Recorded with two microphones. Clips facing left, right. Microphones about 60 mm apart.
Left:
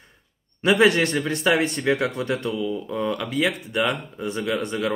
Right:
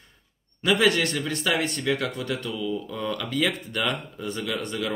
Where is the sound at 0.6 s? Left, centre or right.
Left.